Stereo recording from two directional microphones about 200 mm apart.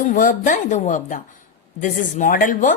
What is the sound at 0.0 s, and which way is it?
A woman's voice, 40° left (ahead or behind).